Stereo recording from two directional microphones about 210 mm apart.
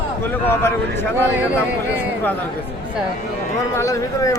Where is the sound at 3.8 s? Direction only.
15° left (ahead or behind).